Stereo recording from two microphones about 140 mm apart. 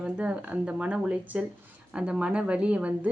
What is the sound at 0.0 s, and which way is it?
Speech, 10° right (ahead or behind).